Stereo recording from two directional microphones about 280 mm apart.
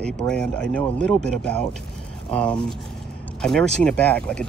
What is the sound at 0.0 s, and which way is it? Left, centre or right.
Speech, centre.